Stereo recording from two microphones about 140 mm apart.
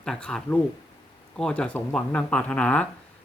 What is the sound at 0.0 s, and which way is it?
Speech, 5° left (ahead or behind).